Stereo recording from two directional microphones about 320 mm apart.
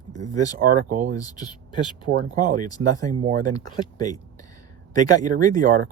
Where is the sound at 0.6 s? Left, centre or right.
Right.